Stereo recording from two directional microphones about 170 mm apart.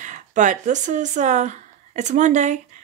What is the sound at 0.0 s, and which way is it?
Speech, 45° right (ahead or behind).